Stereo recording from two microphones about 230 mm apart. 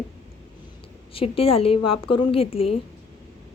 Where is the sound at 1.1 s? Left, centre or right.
Left.